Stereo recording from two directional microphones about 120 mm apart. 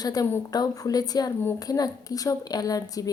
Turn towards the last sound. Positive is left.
turn(degrees=30)  # may be behind; listen again after turning